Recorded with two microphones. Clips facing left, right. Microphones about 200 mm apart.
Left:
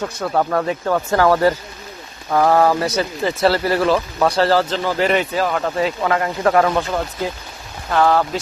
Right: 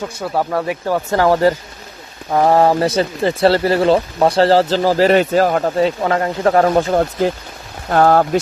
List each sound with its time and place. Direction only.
0.0 s speech: 10° right (ahead or behind); by 5.6 s 45° right (ahead or behind)
5.6 s speech: 30° right (ahead or behind)
6.8 s speech: 50° right (ahead or behind)